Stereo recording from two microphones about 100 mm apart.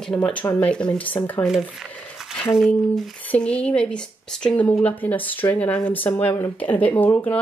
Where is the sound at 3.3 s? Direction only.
10° left (ahead or behind).